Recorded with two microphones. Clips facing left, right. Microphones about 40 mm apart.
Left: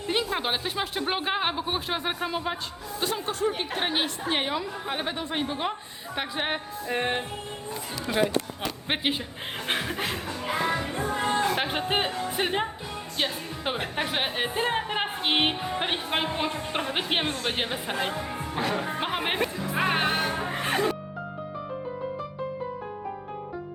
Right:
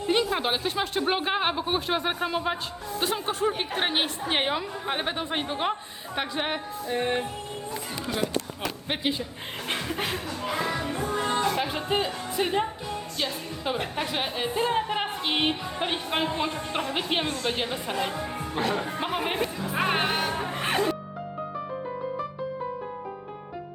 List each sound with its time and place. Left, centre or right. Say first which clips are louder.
0.1 s speech: right 2 dB; centre
3.0 s a woman's voice: right 1 dB; right
6.1 s speech: right 1 dB; centre
7.0 s music: right 1 dB; left
8.9 s a woman's voice: left 1 dB; left
9.6 s chuckle: left 2 dB; centre
10.2 s music: left 1 dB; left
12.4 s a woman's voice: right 3 dB; left
14.8 s music: right 1 dB; centre
16.8 s a woman's voice: left 1 dB; left
18.9 s chatter: even; left
19.7 s music: even; centre
20.6 s music: right 1 dB; right